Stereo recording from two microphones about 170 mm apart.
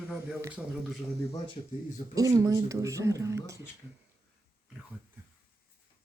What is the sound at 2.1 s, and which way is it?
Speech, 20° right (ahead or behind).